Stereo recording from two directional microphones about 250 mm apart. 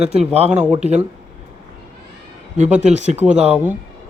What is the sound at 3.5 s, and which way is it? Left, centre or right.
Speech, centre.